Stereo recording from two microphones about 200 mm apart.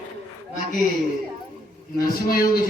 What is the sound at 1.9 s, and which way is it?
Speech, 50° left (ahead or behind).